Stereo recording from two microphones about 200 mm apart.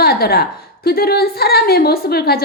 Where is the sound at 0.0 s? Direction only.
50° left (ahead or behind).